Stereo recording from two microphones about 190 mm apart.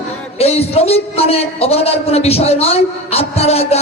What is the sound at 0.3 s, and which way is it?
A man's voice, 30° left (ahead or behind).